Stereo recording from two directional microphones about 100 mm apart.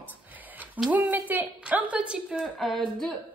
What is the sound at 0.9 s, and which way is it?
A woman's voice, 15° right (ahead or behind).